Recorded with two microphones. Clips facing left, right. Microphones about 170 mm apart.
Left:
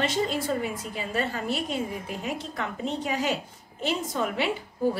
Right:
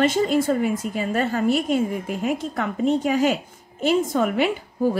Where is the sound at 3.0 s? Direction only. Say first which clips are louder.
Right 7 dB; 50° right (ahead or behind).